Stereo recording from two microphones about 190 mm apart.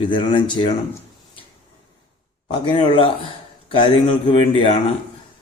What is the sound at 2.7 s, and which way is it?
Speech, 30° left (ahead or behind).